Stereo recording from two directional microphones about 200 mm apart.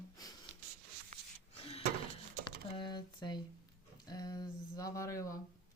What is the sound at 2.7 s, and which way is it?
Speech, 20° left (ahead or behind).